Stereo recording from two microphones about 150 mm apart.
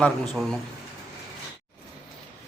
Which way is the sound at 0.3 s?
5° left (ahead or behind).